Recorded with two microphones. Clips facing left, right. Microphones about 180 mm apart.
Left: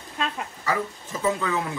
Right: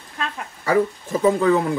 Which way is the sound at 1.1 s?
35° right (ahead or behind).